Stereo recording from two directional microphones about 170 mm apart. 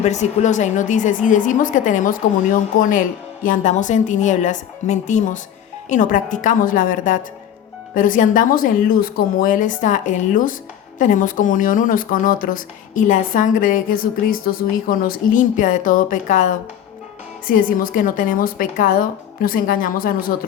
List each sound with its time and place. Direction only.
0.0 s speech: 40° left (ahead or behind)
3.4 s a woman's voice: 50° left (ahead or behind)